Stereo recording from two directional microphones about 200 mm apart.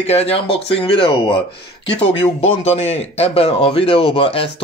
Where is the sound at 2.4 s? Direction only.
30° left (ahead or behind).